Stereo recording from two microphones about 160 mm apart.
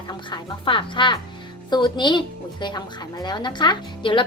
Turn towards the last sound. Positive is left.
turn(degrees=30)  # may be behind; listen again after turning